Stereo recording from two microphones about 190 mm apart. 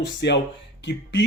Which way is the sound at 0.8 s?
65° left (ahead or behind).